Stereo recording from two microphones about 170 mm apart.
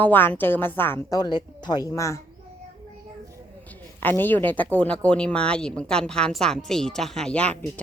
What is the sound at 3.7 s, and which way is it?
A woman's voice, 10° left (ahead or behind).